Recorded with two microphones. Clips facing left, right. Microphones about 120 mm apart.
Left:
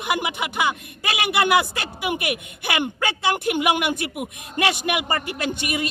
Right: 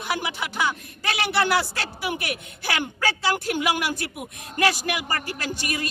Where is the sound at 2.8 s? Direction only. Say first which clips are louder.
Left 1 dB; 20° left (ahead or behind).